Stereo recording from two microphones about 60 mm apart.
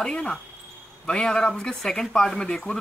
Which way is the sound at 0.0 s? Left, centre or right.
Centre.